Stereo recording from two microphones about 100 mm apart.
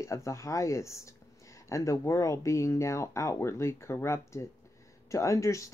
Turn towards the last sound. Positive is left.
turn(degrees=30)  # may be behind; listen again after turning